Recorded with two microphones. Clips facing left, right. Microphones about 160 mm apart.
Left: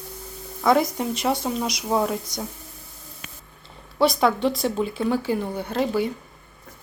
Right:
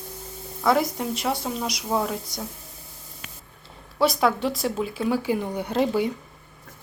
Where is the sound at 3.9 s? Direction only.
5° right (ahead or behind); by 6.1 s 20° right (ahead or behind).